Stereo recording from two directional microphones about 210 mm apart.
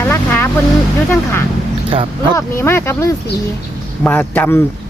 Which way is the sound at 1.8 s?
25° right (ahead or behind).